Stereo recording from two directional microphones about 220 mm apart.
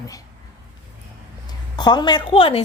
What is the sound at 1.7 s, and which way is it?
Speech, 20° left (ahead or behind).